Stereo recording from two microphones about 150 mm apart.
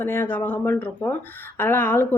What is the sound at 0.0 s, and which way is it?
A woman's voice, 15° left (ahead or behind).